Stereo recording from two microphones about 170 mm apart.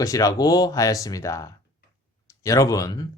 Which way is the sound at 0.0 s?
20° left (ahead or behind).